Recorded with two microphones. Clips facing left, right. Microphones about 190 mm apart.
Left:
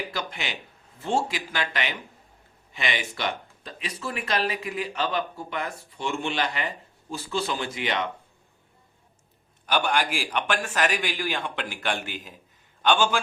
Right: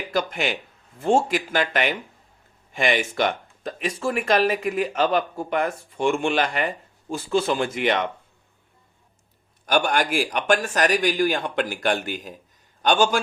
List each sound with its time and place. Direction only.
0.1 s speech: 45° right (ahead or behind)
9.6 s a man's voice: 45° right (ahead or behind)